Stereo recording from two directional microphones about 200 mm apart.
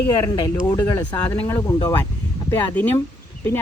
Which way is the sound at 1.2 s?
10° left (ahead or behind).